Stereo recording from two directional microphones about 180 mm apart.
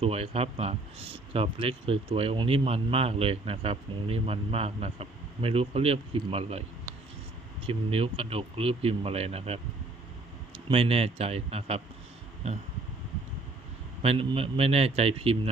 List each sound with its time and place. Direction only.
0.0 s speech: 35° right (ahead or behind)
7.7 s speech: 30° right (ahead or behind)
10.7 s speech: 30° right (ahead or behind)
14.0 s speech: 30° right (ahead or behind)